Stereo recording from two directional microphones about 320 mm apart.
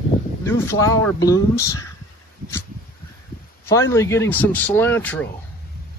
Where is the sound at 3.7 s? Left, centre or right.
Centre.